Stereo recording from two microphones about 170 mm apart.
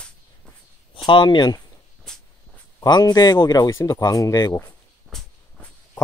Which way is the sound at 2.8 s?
25° left (ahead or behind).